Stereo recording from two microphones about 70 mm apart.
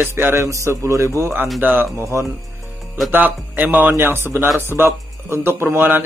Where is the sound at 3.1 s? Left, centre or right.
Right.